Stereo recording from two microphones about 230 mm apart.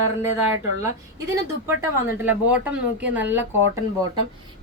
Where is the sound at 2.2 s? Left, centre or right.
Centre.